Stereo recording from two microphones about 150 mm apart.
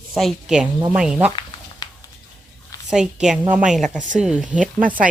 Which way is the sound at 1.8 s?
25° left (ahead or behind).